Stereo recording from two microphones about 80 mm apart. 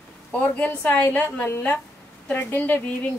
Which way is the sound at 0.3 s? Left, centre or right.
Centre.